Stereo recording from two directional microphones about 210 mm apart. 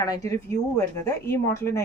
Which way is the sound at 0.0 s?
15° left (ahead or behind).